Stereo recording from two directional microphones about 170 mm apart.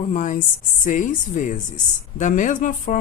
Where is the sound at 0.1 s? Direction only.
50° left (ahead or behind).